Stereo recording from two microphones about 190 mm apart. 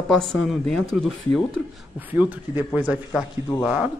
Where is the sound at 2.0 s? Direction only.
10° right (ahead or behind).